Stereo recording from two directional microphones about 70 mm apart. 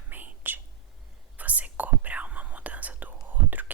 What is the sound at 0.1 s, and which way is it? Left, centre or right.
Whispering, right.